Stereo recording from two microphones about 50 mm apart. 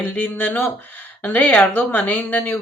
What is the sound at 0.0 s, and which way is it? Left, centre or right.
Speech, left.